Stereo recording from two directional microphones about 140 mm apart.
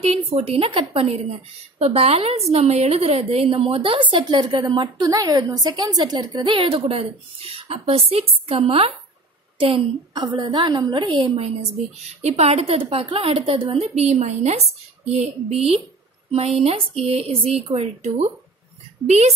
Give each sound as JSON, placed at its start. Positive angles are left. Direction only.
{"t": 0.1, "sound": "a woman's voice", "side_deg": -45}
{"t": 13.9, "sound": "speech", "side_deg": -50}